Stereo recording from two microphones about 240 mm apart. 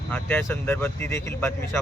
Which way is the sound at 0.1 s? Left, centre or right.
Centre.